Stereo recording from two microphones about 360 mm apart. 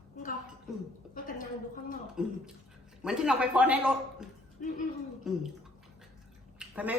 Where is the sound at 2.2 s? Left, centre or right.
Centre.